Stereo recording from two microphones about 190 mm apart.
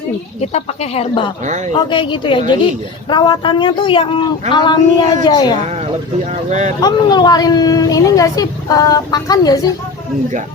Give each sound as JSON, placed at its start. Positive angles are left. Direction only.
{"t": 0.5, "sound": "a woman's voice", "side_deg": 35}
{"t": 1.5, "sound": "speech", "side_deg": -40}
{"t": 1.7, "sound": "a woman's voice", "side_deg": 25}
{"t": 6.5, "sound": "speech", "side_deg": -40}
{"t": 6.8, "sound": "a woman's voice", "side_deg": 20}